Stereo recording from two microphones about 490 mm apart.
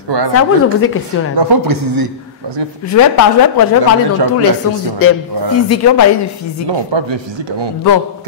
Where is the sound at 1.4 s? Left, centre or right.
Right.